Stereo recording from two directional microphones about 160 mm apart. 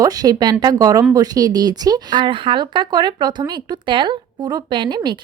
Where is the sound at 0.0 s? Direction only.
25° right (ahead or behind).